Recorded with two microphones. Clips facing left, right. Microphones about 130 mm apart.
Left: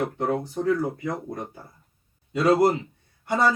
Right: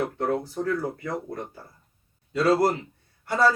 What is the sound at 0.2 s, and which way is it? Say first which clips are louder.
Speech: left 1 dB; 15° left (ahead or behind).